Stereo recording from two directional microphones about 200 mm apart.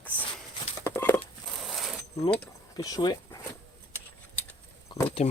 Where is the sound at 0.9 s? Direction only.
10° left (ahead or behind).